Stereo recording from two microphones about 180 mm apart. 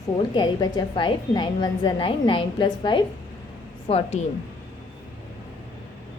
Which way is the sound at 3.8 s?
35° left (ahead or behind).